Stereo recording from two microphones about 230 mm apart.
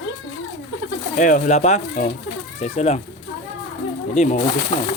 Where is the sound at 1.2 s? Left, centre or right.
Left.